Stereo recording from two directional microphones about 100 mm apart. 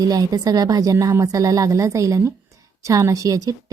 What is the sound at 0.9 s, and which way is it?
Speech, 25° right (ahead or behind).